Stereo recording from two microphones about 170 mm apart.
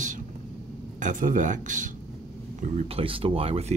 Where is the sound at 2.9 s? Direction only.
35° right (ahead or behind).